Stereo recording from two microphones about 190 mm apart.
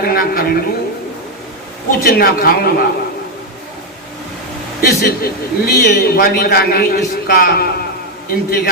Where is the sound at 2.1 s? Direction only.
50° left (ahead or behind).